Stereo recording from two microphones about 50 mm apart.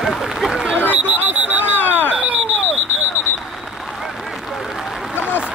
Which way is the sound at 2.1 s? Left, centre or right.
Right.